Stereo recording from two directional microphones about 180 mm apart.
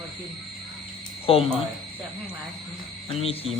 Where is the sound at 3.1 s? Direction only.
30° left (ahead or behind).